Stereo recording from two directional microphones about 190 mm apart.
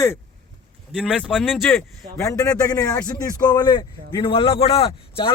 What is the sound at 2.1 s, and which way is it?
A man's voice, 15° left (ahead or behind).